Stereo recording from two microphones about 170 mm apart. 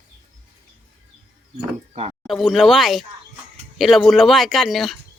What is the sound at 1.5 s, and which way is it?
Speech, 40° right (ahead or behind).